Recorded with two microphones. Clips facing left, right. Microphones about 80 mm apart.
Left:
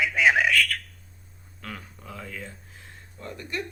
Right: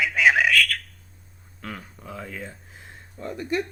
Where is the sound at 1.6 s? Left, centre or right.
Centre.